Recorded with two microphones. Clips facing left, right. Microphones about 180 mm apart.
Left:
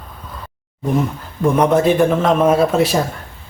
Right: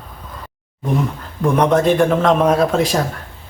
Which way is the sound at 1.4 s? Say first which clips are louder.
Left 1 dB; 5° left (ahead or behind).